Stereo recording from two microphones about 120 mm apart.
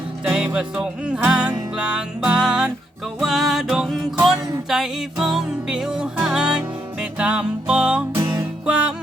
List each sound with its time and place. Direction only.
0.3 s music: 5° right (ahead or behind)
8.1 s music: 20° right (ahead or behind)
8.6 s music: 10° right (ahead or behind)